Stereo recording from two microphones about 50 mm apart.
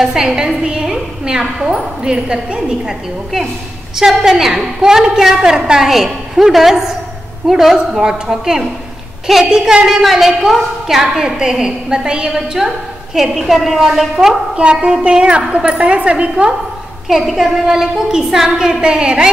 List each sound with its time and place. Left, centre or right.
0.0 s a woman's voice: centre
14.6 s a woman's voice: right
17.1 s a woman's voice: centre